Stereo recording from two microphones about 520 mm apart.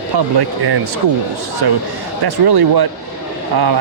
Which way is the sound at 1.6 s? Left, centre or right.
Right.